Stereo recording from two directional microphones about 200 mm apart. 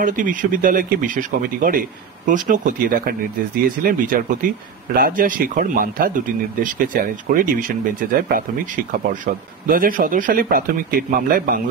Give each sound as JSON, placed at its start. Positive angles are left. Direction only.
{"t": 0.0, "sound": "speech", "side_deg": -40}